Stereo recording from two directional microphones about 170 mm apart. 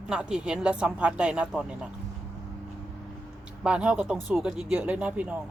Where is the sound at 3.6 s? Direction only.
5° right (ahead or behind).